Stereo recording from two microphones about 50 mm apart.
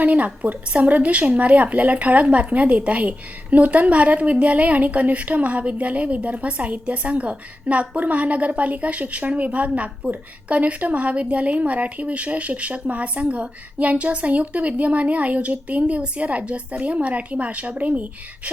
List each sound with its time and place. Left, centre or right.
0.0 s a woman's voice: right